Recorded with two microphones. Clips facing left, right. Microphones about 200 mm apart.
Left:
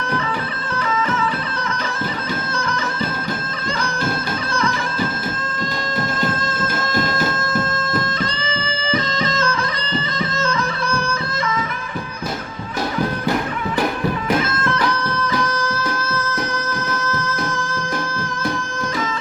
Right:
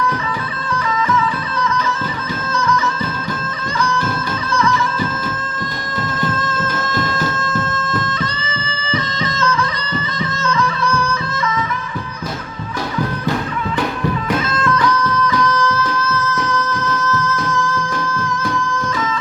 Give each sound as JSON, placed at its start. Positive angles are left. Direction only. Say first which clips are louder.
{"t": 2.5, "sound": "music", "louder": "right 5 dB", "side_deg": 30}
{"t": 7.1, "sound": "a sound", "louder": "even", "side_deg": 30}
{"t": 8.9, "sound": "music", "louder": "left 1 dB", "side_deg": 30}
{"t": 11.1, "sound": "music", "louder": "right 2 dB", "side_deg": 30}
{"t": 14.7, "sound": "music", "louder": "right 7 dB", "side_deg": 30}
{"t": 17.2, "sound": "music", "louder": "right 3 dB", "side_deg": 30}